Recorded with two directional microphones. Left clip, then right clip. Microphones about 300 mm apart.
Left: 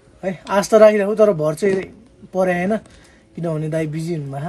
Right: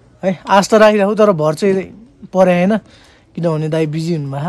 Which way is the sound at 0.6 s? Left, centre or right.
Right.